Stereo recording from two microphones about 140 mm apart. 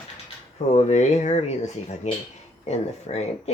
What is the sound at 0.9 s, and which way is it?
Speech, 55° left (ahead or behind).